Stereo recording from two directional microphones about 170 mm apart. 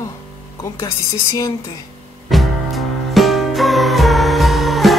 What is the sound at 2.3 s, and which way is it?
Music, centre (ahead or behind).